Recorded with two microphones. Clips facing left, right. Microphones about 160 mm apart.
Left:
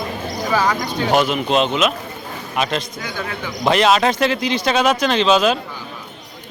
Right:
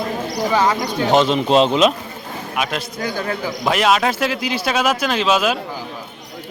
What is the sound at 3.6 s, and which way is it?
Speech, 5° right (ahead or behind).